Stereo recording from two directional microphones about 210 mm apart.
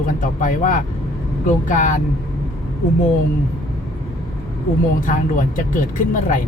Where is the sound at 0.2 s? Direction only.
40° left (ahead or behind).